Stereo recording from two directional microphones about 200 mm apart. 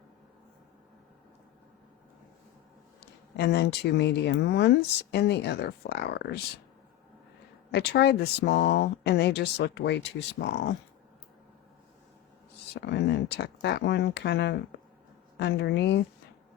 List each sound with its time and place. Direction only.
3.0 s speech: 60° left (ahead or behind)
7.7 s speech: 55° left (ahead or behind)
12.7 s speech: 55° left (ahead or behind)